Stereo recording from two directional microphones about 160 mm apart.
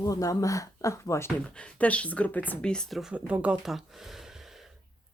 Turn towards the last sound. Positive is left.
turn(degrees=0)  # may be behind; listen again after turning